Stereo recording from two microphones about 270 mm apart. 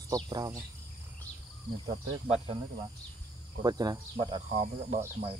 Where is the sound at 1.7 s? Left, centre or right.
Centre.